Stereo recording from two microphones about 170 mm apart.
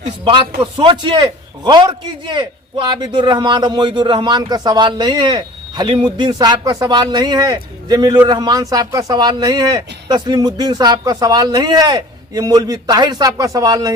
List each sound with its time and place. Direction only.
0.3 s a man's voice: 30° right (ahead or behind)